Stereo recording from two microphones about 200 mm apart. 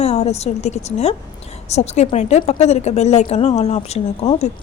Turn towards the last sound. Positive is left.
turn(degrees=30)  # may be behind; listen again after turning